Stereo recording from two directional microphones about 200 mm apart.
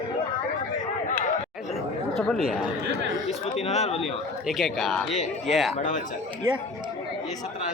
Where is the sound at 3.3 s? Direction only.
30° left (ahead or behind).